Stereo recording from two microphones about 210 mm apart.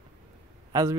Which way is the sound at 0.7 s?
15° right (ahead or behind).